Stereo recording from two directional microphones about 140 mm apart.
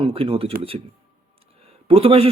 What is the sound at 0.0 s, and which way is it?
Speech, 40° right (ahead or behind).